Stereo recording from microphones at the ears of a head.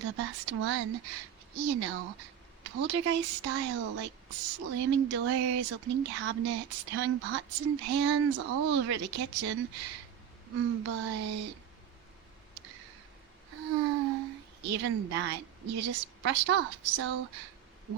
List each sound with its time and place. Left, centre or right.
0.0 s speech: right
12.5 s a sound: right
13.5 s speech: right